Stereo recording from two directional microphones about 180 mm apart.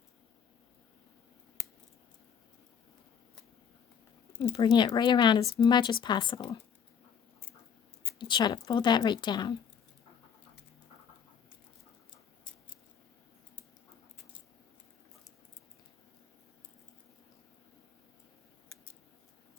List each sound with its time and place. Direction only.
4.5 s speech: 25° left (ahead or behind)
8.2 s speech: 25° left (ahead or behind)